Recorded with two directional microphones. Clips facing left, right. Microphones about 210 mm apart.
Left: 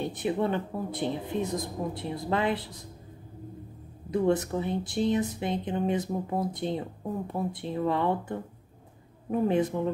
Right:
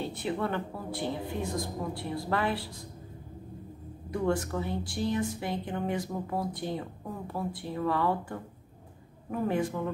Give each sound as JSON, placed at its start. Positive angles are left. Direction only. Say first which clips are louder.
{"t": 0.0, "sound": "speech", "louder": "left 4 dB", "side_deg": 20}
{"t": 4.1, "sound": "speech", "louder": "left 4 dB", "side_deg": 20}